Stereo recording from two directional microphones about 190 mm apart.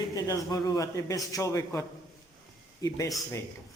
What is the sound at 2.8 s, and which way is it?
Speech, 15° left (ahead or behind).